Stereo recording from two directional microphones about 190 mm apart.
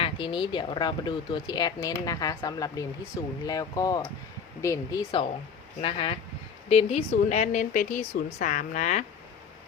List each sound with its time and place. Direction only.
0.0 s speech: 25° left (ahead or behind)
5.8 s speech: 30° left (ahead or behind)